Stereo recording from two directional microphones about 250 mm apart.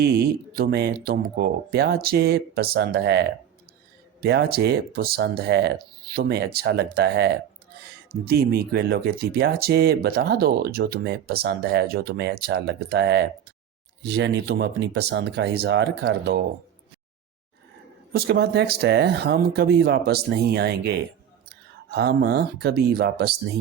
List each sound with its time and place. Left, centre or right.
0.0 s speech: right
18.1 s speech: right